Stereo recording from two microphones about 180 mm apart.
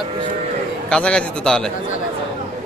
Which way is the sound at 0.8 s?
5° left (ahead or behind).